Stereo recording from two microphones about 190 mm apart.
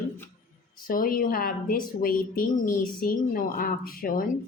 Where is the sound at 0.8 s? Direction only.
50° left (ahead or behind).